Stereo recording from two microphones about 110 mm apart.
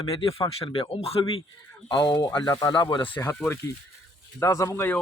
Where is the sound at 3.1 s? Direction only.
20° left (ahead or behind).